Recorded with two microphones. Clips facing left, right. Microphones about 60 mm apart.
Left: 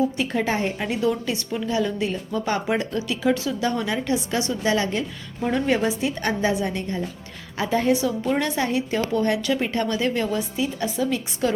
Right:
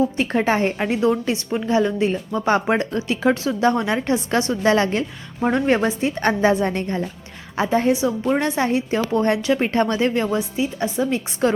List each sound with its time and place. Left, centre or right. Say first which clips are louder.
0.2 s a woman's voice: right 4 dB; right
0.9 s a woman's voice: right 3 dB; right
7.5 s a woman's voice: right 3 dB; right
10.2 s a woman's voice: right 3 dB; right